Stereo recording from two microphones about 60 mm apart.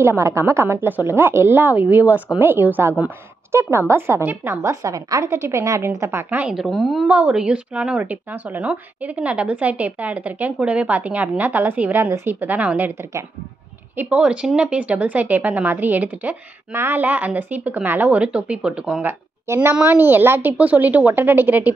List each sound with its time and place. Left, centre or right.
0.0 s a woman's voice: right
3.5 s a woman's voice: right
4.8 s a woman's voice: right
5.3 s a woman's voice: right
6.5 s speech: centre
7.1 s a woman's voice: centre
8.0 s a woman's voice: right
14.1 s speech: centre
16.7 s a woman's voice: right
17.0 s speech: right
19.0 s a woman's voice: right
19.7 s a woman's voice: right
20.5 s speech: right